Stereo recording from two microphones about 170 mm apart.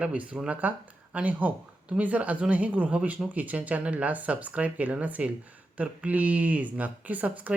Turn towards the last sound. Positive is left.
turn(degrees=-10)  # may be behind; listen again after turning